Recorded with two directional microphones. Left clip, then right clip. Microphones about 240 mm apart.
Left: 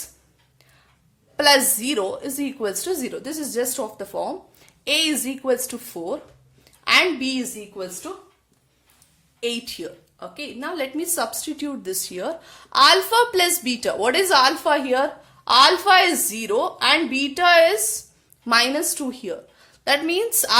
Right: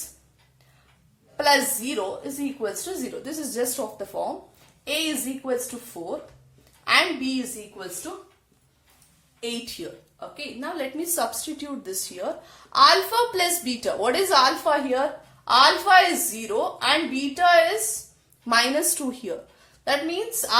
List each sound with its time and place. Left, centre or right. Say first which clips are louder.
1.4 s a woman's voice: left 4 dB; left
10.2 s a woman's voice: left 2 dB; left
18.4 s a woman's voice: left 2 dB; left